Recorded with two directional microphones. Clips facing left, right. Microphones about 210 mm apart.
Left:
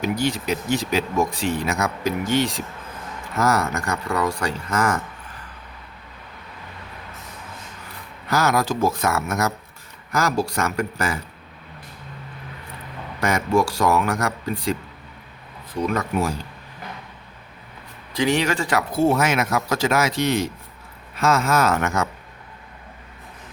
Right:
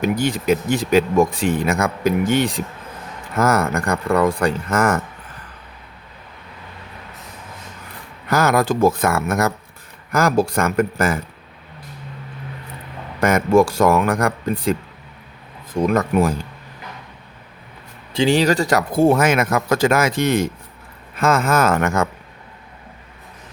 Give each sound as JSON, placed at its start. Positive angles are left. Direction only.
{"t": 0.0, "sound": "speech", "side_deg": -50}
{"t": 8.3, "sound": "speech", "side_deg": -55}
{"t": 13.1, "sound": "speech", "side_deg": -50}
{"t": 18.1, "sound": "speech", "side_deg": -30}